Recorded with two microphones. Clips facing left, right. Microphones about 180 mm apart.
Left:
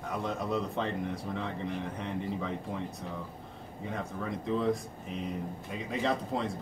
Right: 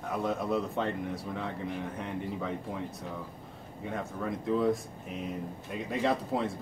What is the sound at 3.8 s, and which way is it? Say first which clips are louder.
Speech: right 2 dB; centre (ahead or behind).